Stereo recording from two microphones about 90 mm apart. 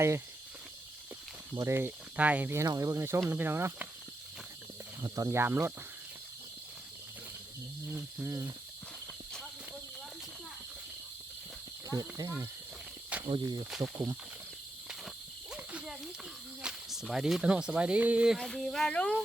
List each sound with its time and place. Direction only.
1.5 s speech: 30° right (ahead or behind)
2.1 s speech: 15° right (ahead or behind)
2.6 s speech: 40° right (ahead or behind)
5.0 s speech: 40° right (ahead or behind)
8.2 s speech: 30° right (ahead or behind)
11.9 s speech: 40° right (ahead or behind)
13.4 s cricket: 45° right (ahead or behind)
13.7 s speech: 5° right (ahead or behind)
13.9 s speech: 25° right (ahead or behind)
15.5 s snake: 15° right (ahead or behind)
16.6 s a sound: 5° right (ahead or behind)
17.4 s speech: 15° right (ahead or behind)
18.3 s speech: 5° left (ahead or behind)